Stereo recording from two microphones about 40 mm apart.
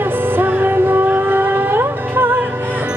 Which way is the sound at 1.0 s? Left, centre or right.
Right.